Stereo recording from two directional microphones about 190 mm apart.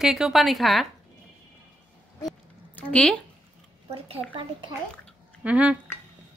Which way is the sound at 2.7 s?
5° left (ahead or behind).